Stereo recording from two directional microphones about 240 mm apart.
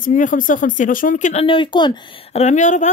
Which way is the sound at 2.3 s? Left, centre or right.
Left.